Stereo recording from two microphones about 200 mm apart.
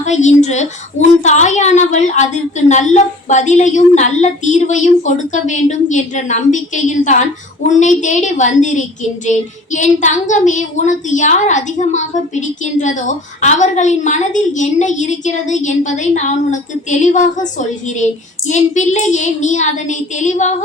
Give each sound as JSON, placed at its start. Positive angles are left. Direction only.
{"t": 0.0, "sound": "a child's voice", "side_deg": 35}